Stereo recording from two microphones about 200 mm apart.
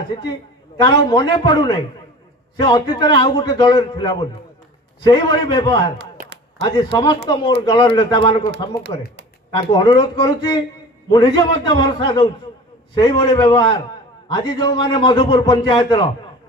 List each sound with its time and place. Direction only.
0.8 s a man's voice: 20° left (ahead or behind)